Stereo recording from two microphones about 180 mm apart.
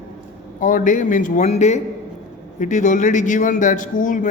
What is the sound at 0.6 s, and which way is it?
Speech, 45° left (ahead or behind).